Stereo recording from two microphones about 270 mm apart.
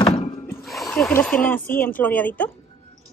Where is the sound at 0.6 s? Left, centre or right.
Centre.